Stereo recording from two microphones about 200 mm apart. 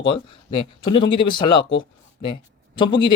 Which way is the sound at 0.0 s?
25° left (ahead or behind).